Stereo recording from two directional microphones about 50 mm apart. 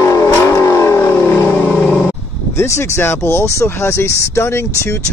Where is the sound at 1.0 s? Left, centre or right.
Left.